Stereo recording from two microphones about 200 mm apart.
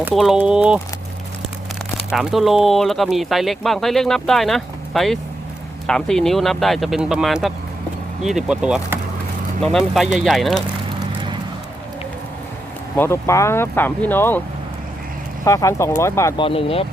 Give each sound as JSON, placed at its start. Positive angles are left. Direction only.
{"t": 0.1, "sound": "speech", "side_deg": 0}
{"t": 2.1, "sound": "speech", "side_deg": 0}
{"t": 13.0, "sound": "speech", "side_deg": 15}
{"t": 15.4, "sound": "speech", "side_deg": 15}
{"t": 16.4, "sound": "speech", "side_deg": 30}